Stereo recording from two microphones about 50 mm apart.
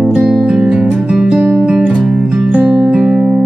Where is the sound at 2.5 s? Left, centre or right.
Right.